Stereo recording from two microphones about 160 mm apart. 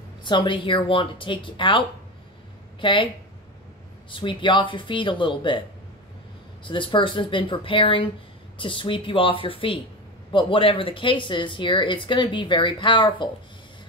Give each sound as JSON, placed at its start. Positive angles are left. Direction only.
{"t": 0.2, "sound": "speech", "side_deg": 30}
{"t": 4.1, "sound": "speech", "side_deg": 30}
{"t": 6.6, "sound": "speech", "side_deg": 30}